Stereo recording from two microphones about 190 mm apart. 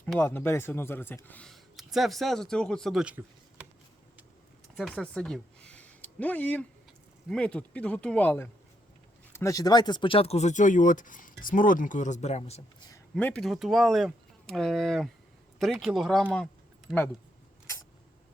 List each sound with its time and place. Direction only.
0.0 s speech: 10° left (ahead or behind); by 3.7 s 5° right (ahead or behind)
4.7 s speech: centre (ahead or behind); by 12.9 s 35° left (ahead or behind)
13.1 s speech: 5° left (ahead or behind)